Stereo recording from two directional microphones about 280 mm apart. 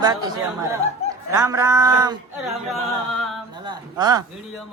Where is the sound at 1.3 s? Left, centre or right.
Centre.